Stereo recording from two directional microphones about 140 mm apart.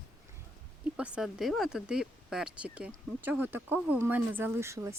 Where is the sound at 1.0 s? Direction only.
5° right (ahead or behind).